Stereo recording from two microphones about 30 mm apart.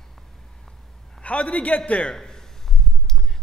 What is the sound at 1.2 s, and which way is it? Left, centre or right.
Speech, left.